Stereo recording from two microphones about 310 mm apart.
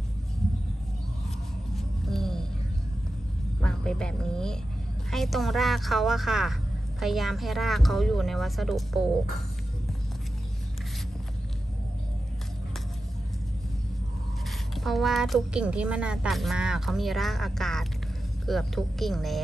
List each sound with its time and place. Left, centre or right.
2.0 s music: centre
3.6 s speech: centre
14.8 s speech: centre